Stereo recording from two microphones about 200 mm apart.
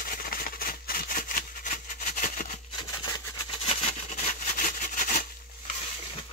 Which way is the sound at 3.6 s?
35° left (ahead or behind).